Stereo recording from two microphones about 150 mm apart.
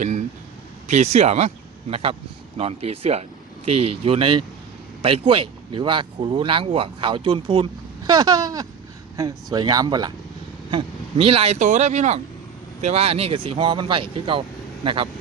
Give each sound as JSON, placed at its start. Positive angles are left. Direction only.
{"t": 0.0, "sound": "a sound", "side_deg": -50}
{"t": 0.9, "sound": "speech", "side_deg": -50}
{"t": 10.7, "sound": "speech", "side_deg": -35}